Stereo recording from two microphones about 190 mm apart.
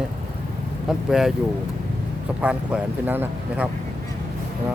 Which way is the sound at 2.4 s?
5° right (ahead or behind).